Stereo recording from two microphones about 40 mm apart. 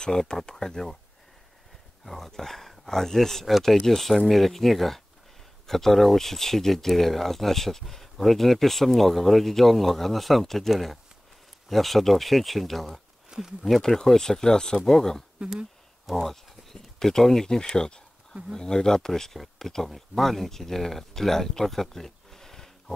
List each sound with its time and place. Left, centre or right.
0.0 s speech: centre
2.0 s speech: centre
13.3 s speech: centre
13.7 s speech: centre
16.3 s speech: centre